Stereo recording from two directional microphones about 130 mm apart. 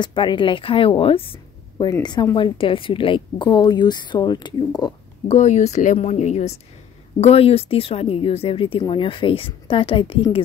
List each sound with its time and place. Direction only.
0.0 s a woman's voice: 40° left (ahead or behind)
5.3 s speech: 60° left (ahead or behind); by 10.4 s 40° left (ahead or behind)